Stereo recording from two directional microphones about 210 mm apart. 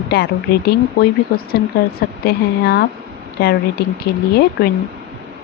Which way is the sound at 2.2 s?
50° left (ahead or behind).